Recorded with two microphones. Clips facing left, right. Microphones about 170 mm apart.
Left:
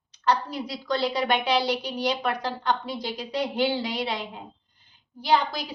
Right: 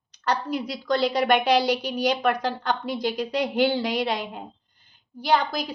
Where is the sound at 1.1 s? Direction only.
45° right (ahead or behind).